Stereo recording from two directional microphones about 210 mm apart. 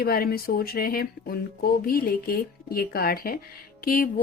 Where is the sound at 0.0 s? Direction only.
45° left (ahead or behind).